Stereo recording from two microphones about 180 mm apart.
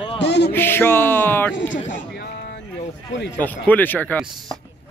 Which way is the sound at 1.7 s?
75° left (ahead or behind).